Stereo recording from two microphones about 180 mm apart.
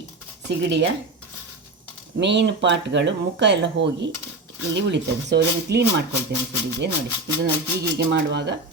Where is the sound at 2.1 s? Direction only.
75° right (ahead or behind).